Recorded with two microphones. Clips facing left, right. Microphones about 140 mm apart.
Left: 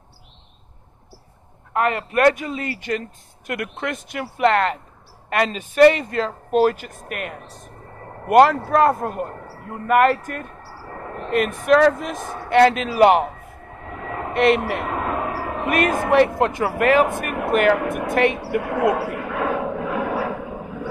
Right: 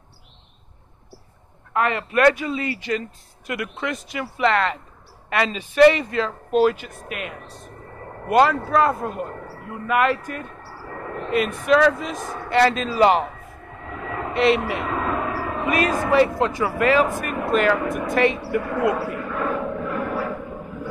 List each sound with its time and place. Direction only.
1.7 s a man's voice: 45° left (ahead or behind)
10.7 s vehicle: 30° left (ahead or behind)
11.2 s a man's voice: 50° left (ahead or behind)
13.8 s vehicle: 35° left (ahead or behind)
14.3 s a sound: 50° left (ahead or behind); by 15.6 s 30° left (ahead or behind)
15.6 s a man's voice: 50° left (ahead or behind); by 20.9 s 85° left